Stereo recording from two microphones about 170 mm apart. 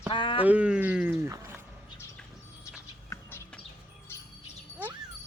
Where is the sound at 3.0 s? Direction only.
15° left (ahead or behind).